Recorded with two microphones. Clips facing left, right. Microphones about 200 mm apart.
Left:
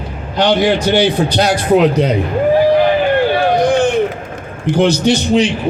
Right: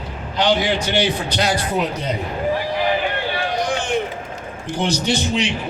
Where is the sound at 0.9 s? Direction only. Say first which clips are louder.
Left 7 dB; 60° left (ahead or behind).